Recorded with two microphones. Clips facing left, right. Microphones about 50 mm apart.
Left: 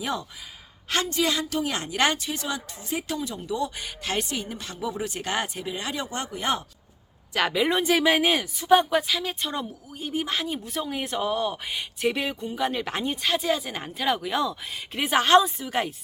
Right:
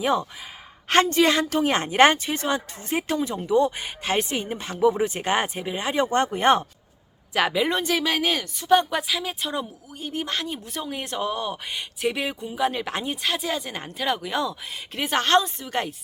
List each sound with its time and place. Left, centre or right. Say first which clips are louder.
0.0 s speech: right 7 dB; right
0.9 s a woman's voice: right 7 dB; right
7.3 s speech: right 1 dB; centre
7.9 s speech: left 2 dB; centre